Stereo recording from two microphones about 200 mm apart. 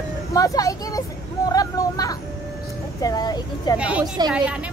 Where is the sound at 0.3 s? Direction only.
15° left (ahead or behind).